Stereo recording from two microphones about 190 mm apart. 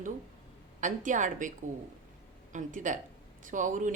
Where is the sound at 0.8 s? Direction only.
40° right (ahead or behind).